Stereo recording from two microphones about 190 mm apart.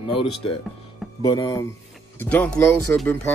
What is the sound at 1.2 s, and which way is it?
Speech, 20° left (ahead or behind).